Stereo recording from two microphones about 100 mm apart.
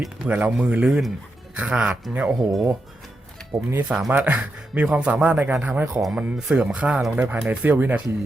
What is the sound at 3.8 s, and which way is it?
Speech, 5° right (ahead or behind).